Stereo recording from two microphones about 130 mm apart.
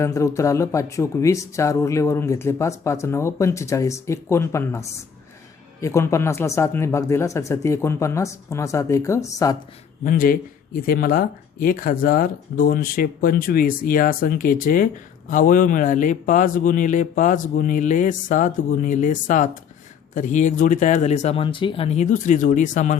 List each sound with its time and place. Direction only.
0.0 s speech: 25° left (ahead or behind)
10.0 s speech: 90° left; by 23.0 s 70° left (ahead or behind)